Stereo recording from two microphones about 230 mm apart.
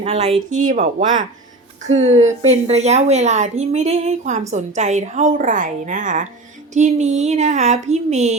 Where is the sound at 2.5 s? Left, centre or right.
Right.